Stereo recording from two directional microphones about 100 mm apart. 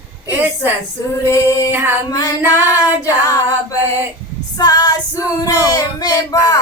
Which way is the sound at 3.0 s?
30° left (ahead or behind).